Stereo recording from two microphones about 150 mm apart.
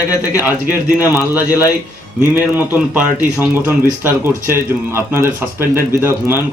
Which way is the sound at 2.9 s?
10° right (ahead or behind).